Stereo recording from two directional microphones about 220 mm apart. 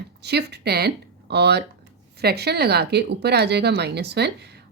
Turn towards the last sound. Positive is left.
turn(degrees=-50)  # may be behind; listen again after turning